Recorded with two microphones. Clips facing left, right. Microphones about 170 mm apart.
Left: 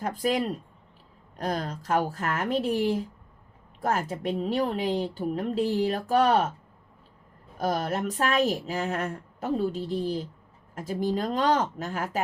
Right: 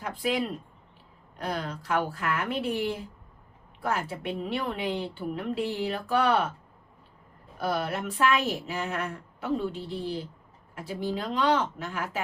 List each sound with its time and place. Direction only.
0.0 s a woman's voice: 40° left (ahead or behind)
7.6 s a woman's voice: 40° left (ahead or behind)